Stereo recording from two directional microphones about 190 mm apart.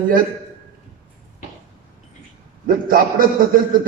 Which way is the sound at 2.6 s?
50° right (ahead or behind).